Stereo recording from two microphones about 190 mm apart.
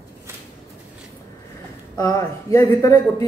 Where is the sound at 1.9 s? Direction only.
20° left (ahead or behind).